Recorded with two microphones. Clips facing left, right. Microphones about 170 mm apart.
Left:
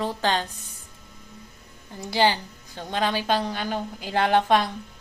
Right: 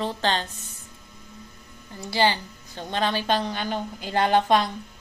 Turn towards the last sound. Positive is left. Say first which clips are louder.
# even
turn(degrees=5)  # may be behind; listen again after turning